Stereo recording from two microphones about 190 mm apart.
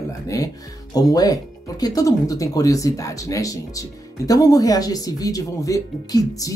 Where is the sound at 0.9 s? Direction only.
20° left (ahead or behind).